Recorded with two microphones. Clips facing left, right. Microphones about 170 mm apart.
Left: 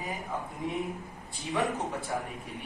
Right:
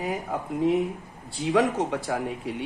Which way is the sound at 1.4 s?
90° right.